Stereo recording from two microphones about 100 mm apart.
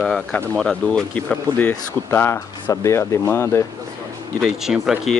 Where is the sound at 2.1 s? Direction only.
25° left (ahead or behind).